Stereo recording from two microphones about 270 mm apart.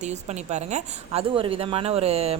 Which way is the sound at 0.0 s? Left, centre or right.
Right.